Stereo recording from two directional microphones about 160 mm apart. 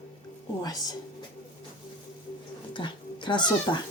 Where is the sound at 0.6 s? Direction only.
25° left (ahead or behind).